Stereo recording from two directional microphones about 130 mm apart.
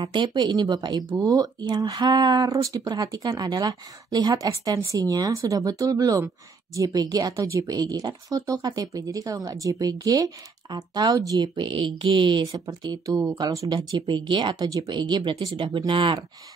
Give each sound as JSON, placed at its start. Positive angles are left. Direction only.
{"t": 0.0, "sound": "speech", "side_deg": -35}